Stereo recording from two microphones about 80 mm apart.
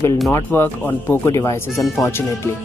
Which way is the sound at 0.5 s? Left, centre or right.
Left.